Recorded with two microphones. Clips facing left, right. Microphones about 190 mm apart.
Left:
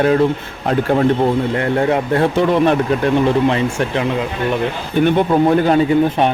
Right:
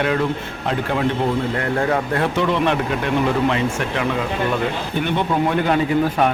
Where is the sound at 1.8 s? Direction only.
25° left (ahead or behind).